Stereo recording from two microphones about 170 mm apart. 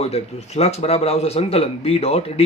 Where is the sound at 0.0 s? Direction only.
40° left (ahead or behind).